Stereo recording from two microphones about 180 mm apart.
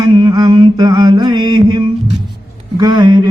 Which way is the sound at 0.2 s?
25° right (ahead or behind).